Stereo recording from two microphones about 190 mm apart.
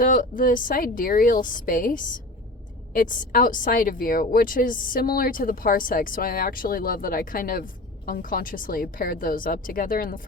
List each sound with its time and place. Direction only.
0.0 s a woman's voice: 45° left (ahead or behind)